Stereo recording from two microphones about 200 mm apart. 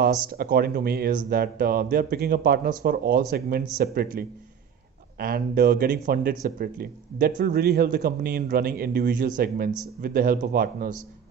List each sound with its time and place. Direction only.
0.0 s speech: 50° right (ahead or behind)